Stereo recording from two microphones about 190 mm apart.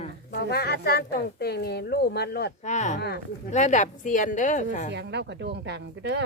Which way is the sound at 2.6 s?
40° left (ahead or behind).